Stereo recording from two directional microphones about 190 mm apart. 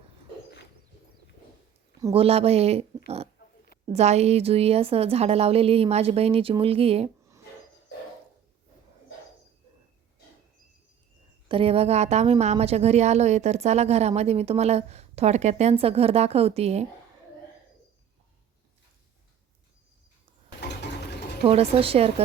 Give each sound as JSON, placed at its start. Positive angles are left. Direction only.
{"t": 2.1, "sound": "a woman's voice", "side_deg": -30}
{"t": 3.4, "sound": "a sound", "side_deg": 65}
{"t": 3.9, "sound": "a woman's voice", "side_deg": -35}
{"t": 11.4, "sound": "a woman's voice", "side_deg": -30}
{"t": 20.6, "sound": "mechanisms", "side_deg": 65}
{"t": 21.4, "sound": "a woman's voice", "side_deg": -30}